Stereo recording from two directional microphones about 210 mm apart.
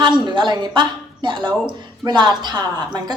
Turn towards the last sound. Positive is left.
turn(degrees=-20)  # may be behind; listen again after turning